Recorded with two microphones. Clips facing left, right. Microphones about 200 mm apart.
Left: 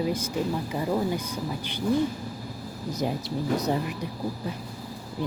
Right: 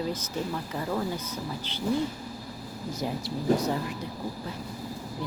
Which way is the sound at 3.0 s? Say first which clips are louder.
Left 4 dB; 20° left (ahead or behind).